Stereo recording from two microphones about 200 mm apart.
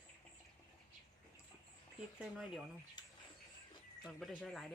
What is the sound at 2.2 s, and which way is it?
Speech, centre (ahead or behind).